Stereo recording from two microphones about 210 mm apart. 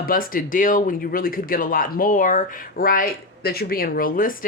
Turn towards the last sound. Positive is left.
turn(degrees=40)  # may be behind; listen again after turning